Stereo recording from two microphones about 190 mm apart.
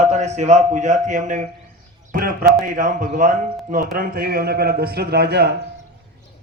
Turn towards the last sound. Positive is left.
turn(degrees=-55)  # may be behind; listen again after turning